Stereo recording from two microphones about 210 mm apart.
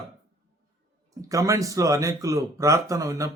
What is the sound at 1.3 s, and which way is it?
Speech, 15° right (ahead or behind).